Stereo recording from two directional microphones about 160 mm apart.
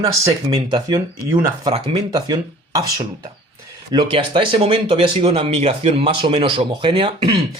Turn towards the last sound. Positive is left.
turn(degrees=-30)  # may be behind; listen again after turning